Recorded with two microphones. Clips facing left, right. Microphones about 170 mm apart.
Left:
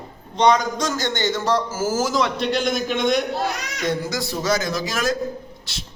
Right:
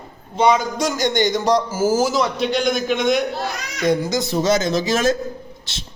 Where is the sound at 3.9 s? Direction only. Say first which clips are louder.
Right 6 dB; 20° right (ahead or behind).